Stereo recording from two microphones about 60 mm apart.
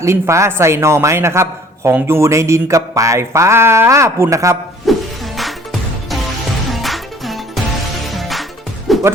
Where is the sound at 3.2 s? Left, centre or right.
Right.